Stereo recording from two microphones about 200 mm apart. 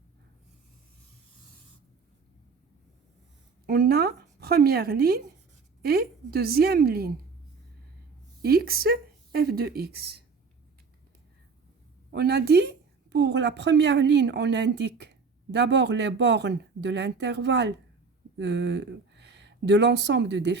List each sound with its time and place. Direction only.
3.7 s speech: 50° right (ahead or behind)
8.4 s speech: 50° right (ahead or behind)
12.1 s a woman's voice: 55° right (ahead or behind)